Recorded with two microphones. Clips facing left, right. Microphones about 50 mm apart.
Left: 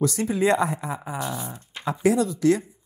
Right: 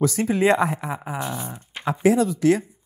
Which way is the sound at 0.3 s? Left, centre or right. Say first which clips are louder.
Right 2 dB; right.